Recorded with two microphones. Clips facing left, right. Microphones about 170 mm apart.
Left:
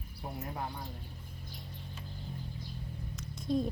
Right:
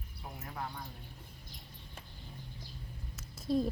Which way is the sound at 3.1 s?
5° right (ahead or behind).